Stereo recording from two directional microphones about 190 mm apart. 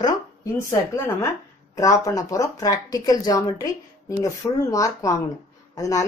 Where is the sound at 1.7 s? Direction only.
15° left (ahead or behind).